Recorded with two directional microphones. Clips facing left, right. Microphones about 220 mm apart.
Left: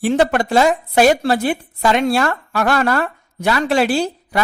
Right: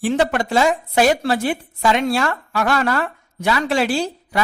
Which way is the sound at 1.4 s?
50° left (ahead or behind).